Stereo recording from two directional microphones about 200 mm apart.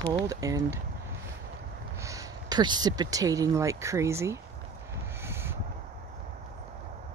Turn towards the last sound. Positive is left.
turn(degrees=-10)  # may be behind; listen again after turning